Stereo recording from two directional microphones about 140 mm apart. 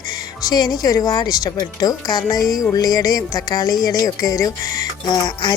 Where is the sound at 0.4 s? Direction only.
30° left (ahead or behind).